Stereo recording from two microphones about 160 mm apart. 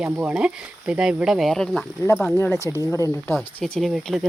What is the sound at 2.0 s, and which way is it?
Speech, 15° left (ahead or behind).